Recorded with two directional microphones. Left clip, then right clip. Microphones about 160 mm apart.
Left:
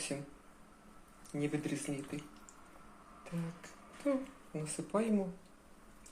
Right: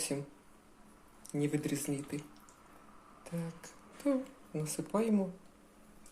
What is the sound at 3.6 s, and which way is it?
Speech, 20° right (ahead or behind).